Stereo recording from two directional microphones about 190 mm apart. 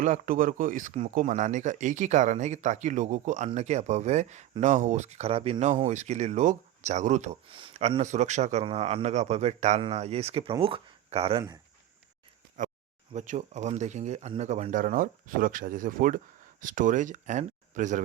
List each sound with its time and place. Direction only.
0.0 s speech: 45° right (ahead or behind)
12.6 s a sound: 40° right (ahead or behind)
13.1 s speech: 40° right (ahead or behind)